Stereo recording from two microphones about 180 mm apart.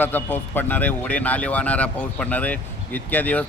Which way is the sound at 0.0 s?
10° left (ahead or behind).